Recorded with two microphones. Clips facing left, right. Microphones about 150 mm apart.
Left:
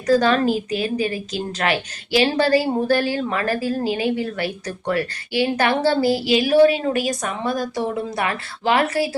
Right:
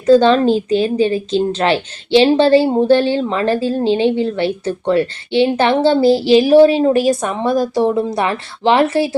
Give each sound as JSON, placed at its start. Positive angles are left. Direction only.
{"t": 0.0, "sound": "a woman's voice", "side_deg": -25}